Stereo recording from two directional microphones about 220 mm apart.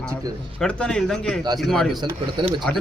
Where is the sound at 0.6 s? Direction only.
5° left (ahead or behind).